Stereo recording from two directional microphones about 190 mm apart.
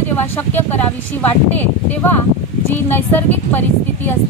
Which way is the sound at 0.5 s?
10° left (ahead or behind).